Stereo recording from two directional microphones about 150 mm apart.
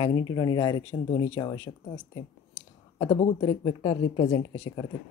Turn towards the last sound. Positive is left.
turn(degrees=20)  # may be behind; listen again after turning